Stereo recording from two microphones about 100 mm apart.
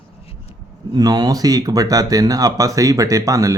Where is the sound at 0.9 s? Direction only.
40° right (ahead or behind).